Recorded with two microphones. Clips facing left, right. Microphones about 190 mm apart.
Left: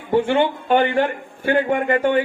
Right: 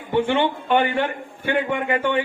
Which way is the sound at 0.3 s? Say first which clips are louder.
Left 2 dB; 40° left (ahead or behind).